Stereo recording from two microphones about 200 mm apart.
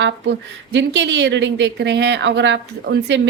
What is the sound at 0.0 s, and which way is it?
A woman's voice, 65° right (ahead or behind).